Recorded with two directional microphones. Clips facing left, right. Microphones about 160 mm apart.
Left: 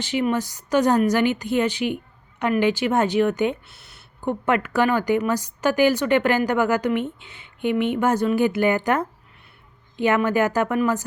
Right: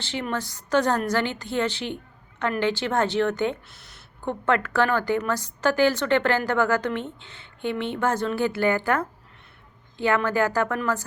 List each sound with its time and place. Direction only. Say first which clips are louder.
0.0 s a woman's voice: left 7 dB; 15° left (ahead or behind)